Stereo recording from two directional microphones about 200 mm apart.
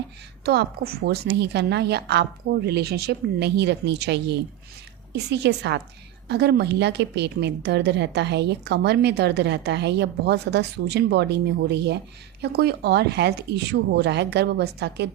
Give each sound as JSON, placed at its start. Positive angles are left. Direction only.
{"t": 0.4, "sound": "a woman's voice", "side_deg": -55}